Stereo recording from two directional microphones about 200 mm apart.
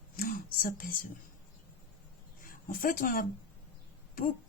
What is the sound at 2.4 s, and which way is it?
Speech, 45° left (ahead or behind).